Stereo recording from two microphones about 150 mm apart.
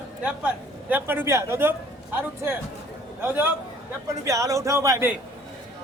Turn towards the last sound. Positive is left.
turn(degrees=-20)  # may be behind; listen again after turning